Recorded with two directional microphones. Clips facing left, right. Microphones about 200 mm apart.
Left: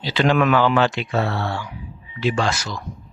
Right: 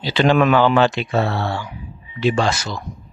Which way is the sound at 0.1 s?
25° right (ahead or behind).